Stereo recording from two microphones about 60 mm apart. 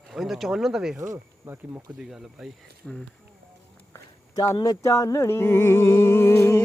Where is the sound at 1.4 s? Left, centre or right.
Right.